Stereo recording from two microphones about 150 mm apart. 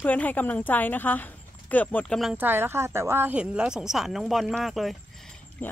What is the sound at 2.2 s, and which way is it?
Speech, 10° right (ahead or behind).